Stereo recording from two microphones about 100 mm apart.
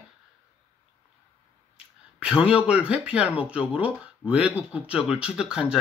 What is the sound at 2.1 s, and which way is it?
Speech, 10° right (ahead or behind).